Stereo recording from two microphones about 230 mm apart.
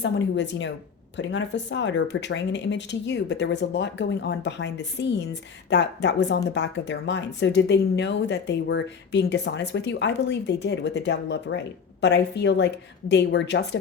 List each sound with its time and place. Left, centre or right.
0.0 s speech: left